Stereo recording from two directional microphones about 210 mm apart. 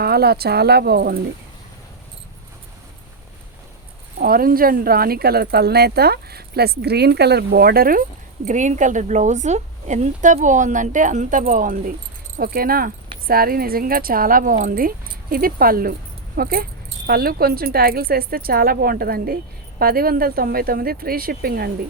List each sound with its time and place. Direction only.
0.0 s speech: 50° right (ahead or behind)
4.2 s a woman's voice: 45° right (ahead or behind)